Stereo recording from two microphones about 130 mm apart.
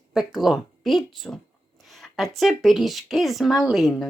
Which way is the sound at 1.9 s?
Centre (ahead or behind).